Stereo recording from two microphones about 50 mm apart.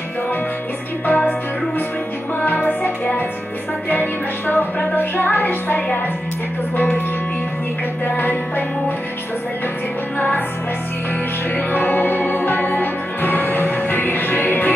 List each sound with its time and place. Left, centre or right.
1.0 s music: left
2.4 s music: left
3.9 s music: left
8.2 s music: left
10.1 s music: left
11.5 s music: left